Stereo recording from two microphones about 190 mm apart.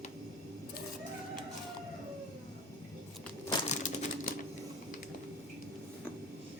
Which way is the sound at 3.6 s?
40° left (ahead or behind).